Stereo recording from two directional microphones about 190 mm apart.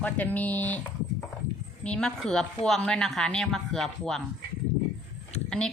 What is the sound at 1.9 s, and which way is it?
A woman's voice, 5° left (ahead or behind).